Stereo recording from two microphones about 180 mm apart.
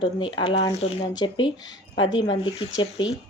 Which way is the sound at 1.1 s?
25° left (ahead or behind).